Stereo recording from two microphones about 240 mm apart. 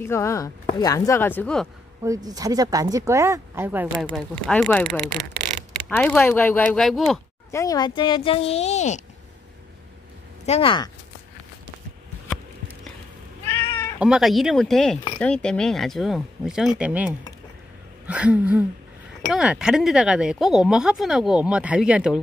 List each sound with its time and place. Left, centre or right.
0.0 s speech: centre
2.0 s speech: centre
4.0 s speech: centre
7.5 s speech: centre
10.4 s speech: left
13.6 s cat: centre
13.9 s speech: centre